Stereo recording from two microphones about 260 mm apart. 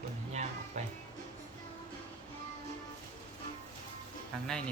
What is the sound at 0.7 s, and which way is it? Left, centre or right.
Music, right.